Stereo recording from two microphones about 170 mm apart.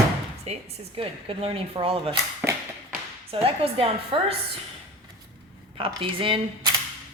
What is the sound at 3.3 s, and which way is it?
Speech, 35° right (ahead or behind).